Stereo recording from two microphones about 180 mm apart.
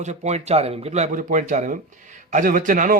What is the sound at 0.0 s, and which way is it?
A man's voice, 40° right (ahead or behind).